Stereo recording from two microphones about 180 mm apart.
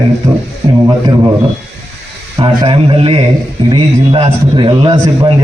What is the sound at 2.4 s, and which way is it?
A man's voice, 30° right (ahead or behind).